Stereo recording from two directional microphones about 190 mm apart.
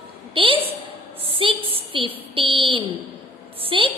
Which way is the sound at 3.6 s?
30° right (ahead or behind).